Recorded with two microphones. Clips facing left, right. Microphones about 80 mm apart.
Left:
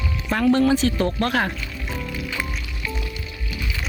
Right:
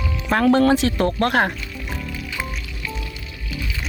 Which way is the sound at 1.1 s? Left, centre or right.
Right.